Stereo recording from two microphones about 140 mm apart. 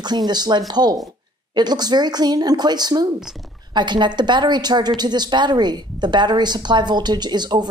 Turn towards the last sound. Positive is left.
turn(degrees=-30)  # may be behind; listen again after turning